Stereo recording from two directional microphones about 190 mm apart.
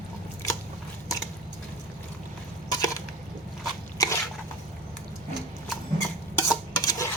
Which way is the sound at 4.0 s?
20° left (ahead or behind).